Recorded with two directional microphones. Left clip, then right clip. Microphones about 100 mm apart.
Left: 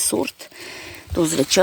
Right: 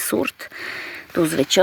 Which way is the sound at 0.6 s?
Centre (ahead or behind).